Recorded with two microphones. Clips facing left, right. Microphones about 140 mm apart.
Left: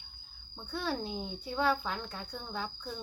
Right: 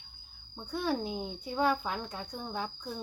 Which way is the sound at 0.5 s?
15° right (ahead or behind).